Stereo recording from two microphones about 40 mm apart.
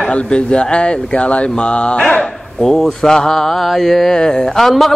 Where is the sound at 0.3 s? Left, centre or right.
Left.